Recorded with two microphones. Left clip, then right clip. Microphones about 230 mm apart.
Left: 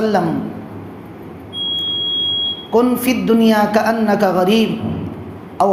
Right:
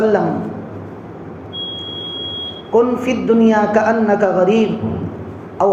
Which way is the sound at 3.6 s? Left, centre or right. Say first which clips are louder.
Right 1 dB; left.